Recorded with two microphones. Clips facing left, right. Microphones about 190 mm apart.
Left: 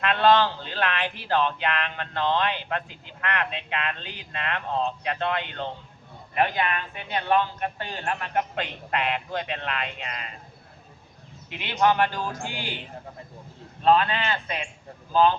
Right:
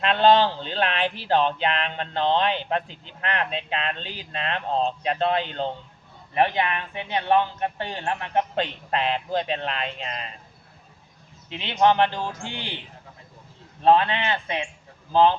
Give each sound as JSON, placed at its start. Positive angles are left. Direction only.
{"t": 0.0, "sound": "speech", "side_deg": -30}
{"t": 11.4, "sound": "speech", "side_deg": -25}
{"t": 13.8, "sound": "speech", "side_deg": -25}